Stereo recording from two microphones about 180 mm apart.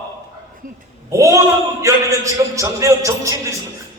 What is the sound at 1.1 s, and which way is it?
A man's voice, 15° right (ahead or behind).